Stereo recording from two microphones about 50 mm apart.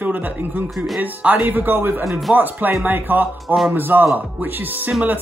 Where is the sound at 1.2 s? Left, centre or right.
Right.